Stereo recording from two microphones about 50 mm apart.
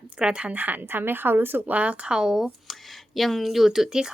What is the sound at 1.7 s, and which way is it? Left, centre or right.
Speech, right.